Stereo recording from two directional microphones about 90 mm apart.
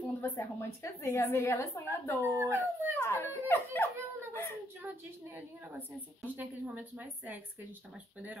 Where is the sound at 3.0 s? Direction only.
25° left (ahead or behind).